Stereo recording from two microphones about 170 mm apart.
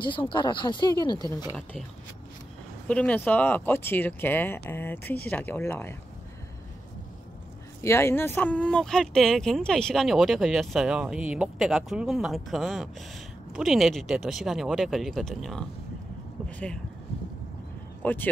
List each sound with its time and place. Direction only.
0.0 s speech: 30° left (ahead or behind)
2.9 s speech: 5° left (ahead or behind)
7.8 s speech: 15° left (ahead or behind)
18.0 s speech: 10° left (ahead or behind)